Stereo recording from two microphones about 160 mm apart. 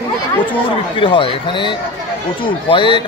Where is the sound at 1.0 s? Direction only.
35° left (ahead or behind).